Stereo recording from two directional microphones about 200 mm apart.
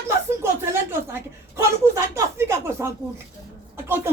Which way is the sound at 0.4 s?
15° right (ahead or behind).